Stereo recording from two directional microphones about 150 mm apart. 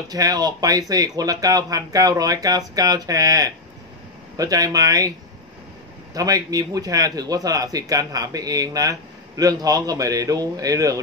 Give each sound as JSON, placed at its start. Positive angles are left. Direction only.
{"t": 0.1, "sound": "speech", "side_deg": -25}
{"t": 6.1, "sound": "speech", "side_deg": -25}